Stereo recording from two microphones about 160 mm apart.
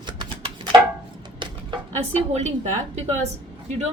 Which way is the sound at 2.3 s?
45° right (ahead or behind).